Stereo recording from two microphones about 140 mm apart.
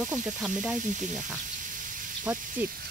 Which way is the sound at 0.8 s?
65° right (ahead or behind).